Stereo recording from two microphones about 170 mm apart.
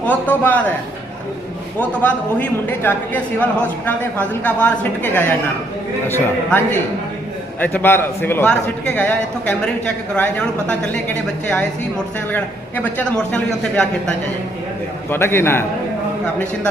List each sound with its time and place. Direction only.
0.0 s a man's voice: 10° left (ahead or behind)
1.8 s a man's voice: 10° left (ahead or behind)
7.6 s a man's voice: 10° left (ahead or behind)
15.1 s a man's voice: 15° left (ahead or behind)